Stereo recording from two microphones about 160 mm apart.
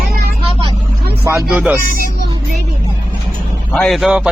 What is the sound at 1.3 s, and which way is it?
Speech, 5° right (ahead or behind).